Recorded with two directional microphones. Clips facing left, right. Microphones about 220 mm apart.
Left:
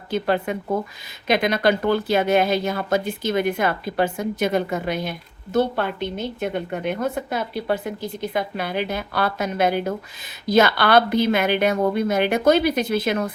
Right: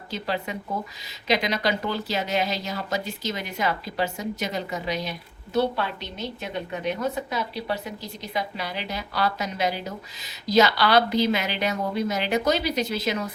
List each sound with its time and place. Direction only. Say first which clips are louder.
0.1 s a woman's voice: left 7 dB; 55° left (ahead or behind)